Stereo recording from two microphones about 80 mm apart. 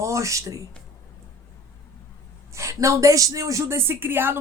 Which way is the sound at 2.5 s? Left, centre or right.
Right.